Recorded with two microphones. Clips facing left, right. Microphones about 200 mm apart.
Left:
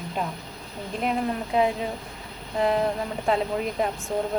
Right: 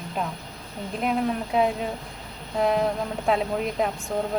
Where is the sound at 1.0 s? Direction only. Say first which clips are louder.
Right 1 dB; centre (ahead or behind).